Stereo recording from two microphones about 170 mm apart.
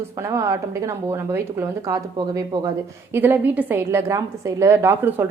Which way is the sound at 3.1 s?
10° right (ahead or behind).